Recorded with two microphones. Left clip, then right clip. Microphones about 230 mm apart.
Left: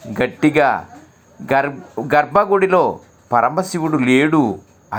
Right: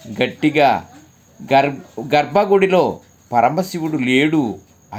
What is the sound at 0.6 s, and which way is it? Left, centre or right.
Speech, centre.